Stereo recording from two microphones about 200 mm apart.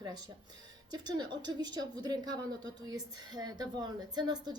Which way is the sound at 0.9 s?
20° right (ahead or behind).